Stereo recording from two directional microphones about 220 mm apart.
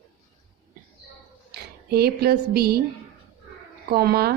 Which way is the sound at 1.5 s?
45° right (ahead or behind).